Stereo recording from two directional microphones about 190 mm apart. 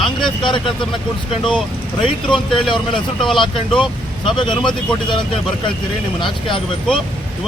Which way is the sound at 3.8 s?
25° left (ahead or behind).